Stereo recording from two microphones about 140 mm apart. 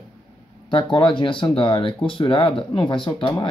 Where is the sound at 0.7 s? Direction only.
35° left (ahead or behind).